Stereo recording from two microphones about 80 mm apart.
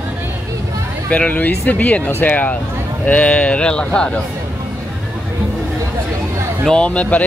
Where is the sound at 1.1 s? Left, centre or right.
Centre.